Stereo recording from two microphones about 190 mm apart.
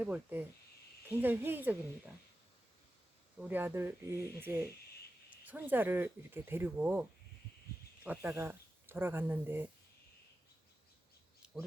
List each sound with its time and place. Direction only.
0.0 s speech: 10° right (ahead or behind)
3.4 s speech: 10° right (ahead or behind)